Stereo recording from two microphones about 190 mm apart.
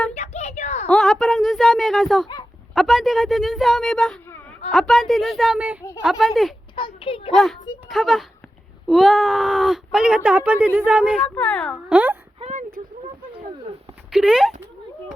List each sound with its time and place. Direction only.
0.1 s a sound: 35° left (ahead or behind)
0.9 s speech: centre (ahead or behind)
6.7 s a child's voice: 25° left (ahead or behind)
7.3 s speech: centre (ahead or behind)
11.3 s speech: 10° left (ahead or behind)
11.9 s speech: 5° right (ahead or behind)
12.4 s a sound: 40° right (ahead or behind)
14.1 s speech: 5° right (ahead or behind)